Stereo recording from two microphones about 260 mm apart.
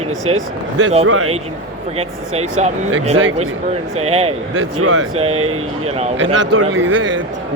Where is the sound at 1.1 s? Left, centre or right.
Right.